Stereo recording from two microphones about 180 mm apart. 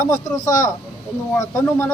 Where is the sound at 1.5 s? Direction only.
15° left (ahead or behind).